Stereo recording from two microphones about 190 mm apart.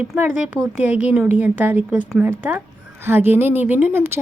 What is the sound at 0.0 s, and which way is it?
A woman's voice, 10° right (ahead or behind).